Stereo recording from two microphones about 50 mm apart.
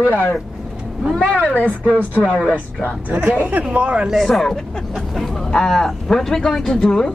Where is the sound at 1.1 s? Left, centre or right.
Left.